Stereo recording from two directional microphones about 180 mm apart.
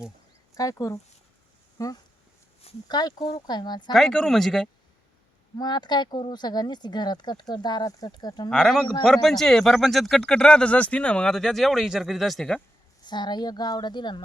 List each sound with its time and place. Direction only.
0.5 s speech: 20° left (ahead or behind)
2.6 s speech: 35° left (ahead or behind)
3.9 s speech: centre (ahead or behind)
5.5 s speech: 25° left (ahead or behind)
8.4 s speech: centre (ahead or behind)
13.1 s speech: 25° left (ahead or behind)